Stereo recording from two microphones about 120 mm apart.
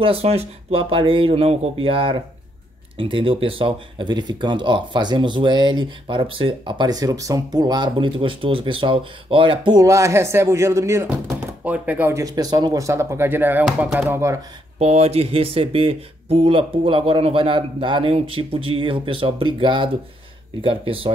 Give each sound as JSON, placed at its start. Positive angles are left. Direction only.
{"t": 0.0, "sound": "speech", "side_deg": -55}
{"t": 11.6, "sound": "speech", "side_deg": -10}
{"t": 12.1, "sound": "speech", "side_deg": -30}
{"t": 13.7, "sound": "speech", "side_deg": 0}
{"t": 13.9, "sound": "speech", "side_deg": -20}
{"t": 14.8, "sound": "speech", "side_deg": -60}